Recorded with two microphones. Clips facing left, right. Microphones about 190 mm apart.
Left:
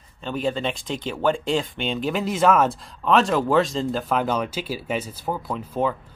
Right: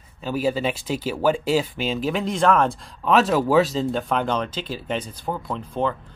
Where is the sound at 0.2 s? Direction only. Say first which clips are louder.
Right 2 dB; 5° right (ahead or behind).